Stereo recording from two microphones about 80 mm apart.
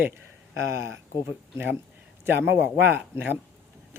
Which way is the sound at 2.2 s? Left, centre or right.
Right.